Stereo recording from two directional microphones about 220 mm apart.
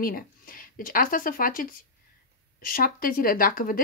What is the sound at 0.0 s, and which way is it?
Speech, 40° left (ahead or behind).